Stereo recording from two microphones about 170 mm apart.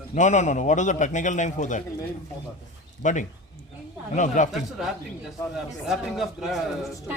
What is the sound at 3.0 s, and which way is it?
A man's voice, 45° left (ahead or behind).